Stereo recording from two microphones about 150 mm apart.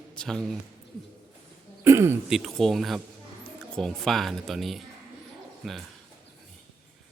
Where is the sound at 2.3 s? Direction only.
Centre (ahead or behind).